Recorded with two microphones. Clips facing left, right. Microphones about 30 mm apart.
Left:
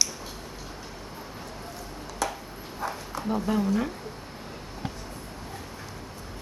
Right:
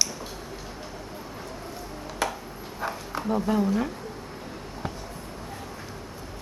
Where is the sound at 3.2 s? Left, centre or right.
Centre.